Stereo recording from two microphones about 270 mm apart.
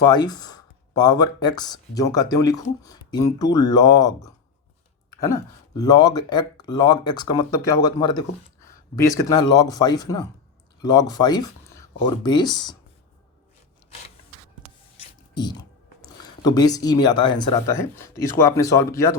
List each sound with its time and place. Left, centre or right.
0.0 s speech: centre
15.4 s speech: centre